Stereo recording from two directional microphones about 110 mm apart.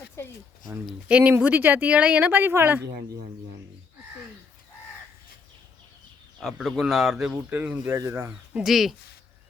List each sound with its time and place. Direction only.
0.2 s speech: 20° left (ahead or behind)
0.9 s speech: 10° right (ahead or behind)
6.4 s speech: centre (ahead or behind)
7.5 s speech: 15° right (ahead or behind)
7.9 s speech: 25° right (ahead or behind)
8.6 s speech: centre (ahead or behind)